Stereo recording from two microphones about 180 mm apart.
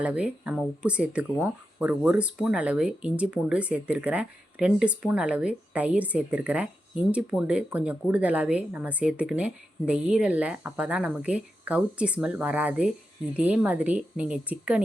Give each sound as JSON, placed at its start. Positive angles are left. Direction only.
{"t": 0.0, "sound": "speech", "side_deg": -5}